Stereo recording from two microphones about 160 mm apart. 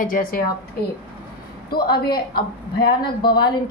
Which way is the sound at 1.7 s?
75° left (ahead or behind).